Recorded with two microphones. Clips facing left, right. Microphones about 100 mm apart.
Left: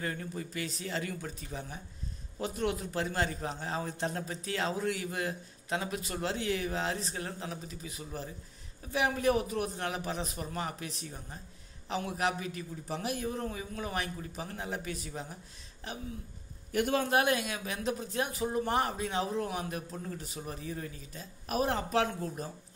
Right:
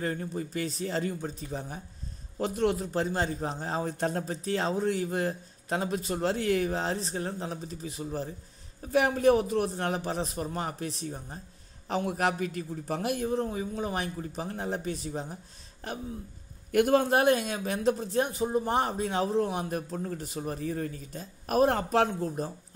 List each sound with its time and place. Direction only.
0.0 s a man's voice: 35° right (ahead or behind)
6.2 s a man's voice: 45° right (ahead or behind)
16.7 s a man's voice: 45° right (ahead or behind)
19.4 s a man's voice: 30° right (ahead or behind)
19.7 s a man's voice: 40° right (ahead or behind)